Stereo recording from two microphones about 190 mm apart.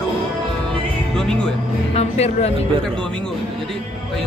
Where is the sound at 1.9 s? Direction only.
35° left (ahead or behind).